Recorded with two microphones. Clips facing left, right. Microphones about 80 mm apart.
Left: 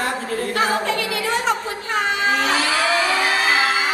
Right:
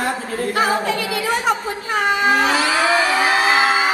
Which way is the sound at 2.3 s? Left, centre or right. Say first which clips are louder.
Right 3 dB; centre.